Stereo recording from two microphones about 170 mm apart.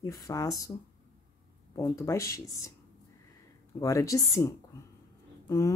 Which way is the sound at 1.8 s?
15° left (ahead or behind).